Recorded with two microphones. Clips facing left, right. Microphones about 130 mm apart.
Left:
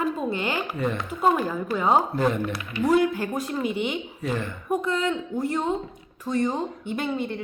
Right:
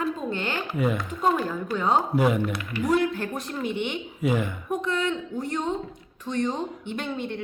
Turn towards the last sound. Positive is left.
turn(degrees=5)  # may be behind; listen again after turning